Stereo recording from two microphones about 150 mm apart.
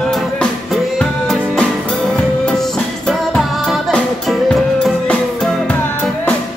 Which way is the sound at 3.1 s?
Centre (ahead or behind).